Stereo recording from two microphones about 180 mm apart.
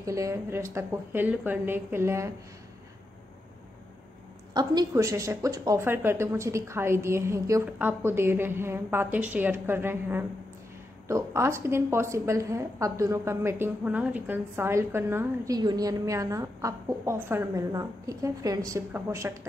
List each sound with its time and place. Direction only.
0.0 s a woman's voice: 15° right (ahead or behind)
4.6 s a woman's voice: 20° right (ahead or behind)